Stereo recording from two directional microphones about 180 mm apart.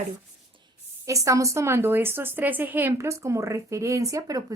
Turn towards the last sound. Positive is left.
turn(degrees=-20)  # may be behind; listen again after turning